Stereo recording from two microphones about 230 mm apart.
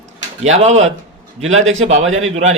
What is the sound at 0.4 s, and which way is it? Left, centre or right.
A man's voice, right.